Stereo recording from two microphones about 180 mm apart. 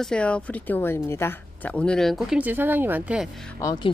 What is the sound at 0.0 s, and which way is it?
Speech, 5° left (ahead or behind).